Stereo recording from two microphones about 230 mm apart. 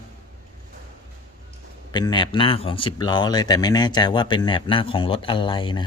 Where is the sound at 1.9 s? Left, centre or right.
Centre.